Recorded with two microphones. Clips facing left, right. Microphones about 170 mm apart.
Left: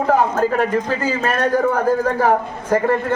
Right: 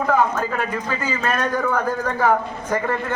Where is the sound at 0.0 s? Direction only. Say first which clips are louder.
Left 3 dB; 30° left (ahead or behind).